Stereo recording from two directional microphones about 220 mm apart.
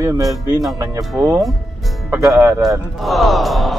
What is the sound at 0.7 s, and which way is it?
Speech, 15° right (ahead or behind).